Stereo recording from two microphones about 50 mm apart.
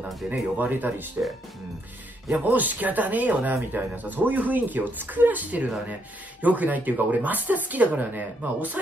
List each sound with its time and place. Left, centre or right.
0.3 s speech: right
2.3 s speech: right